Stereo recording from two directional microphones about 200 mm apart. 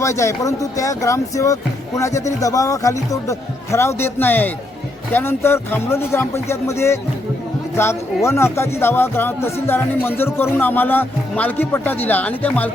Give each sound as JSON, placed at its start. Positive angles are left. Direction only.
{"t": 0.0, "sound": "speech", "side_deg": 15}